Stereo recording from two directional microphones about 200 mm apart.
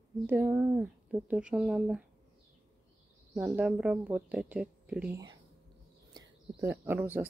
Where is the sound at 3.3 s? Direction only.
Centre (ahead or behind).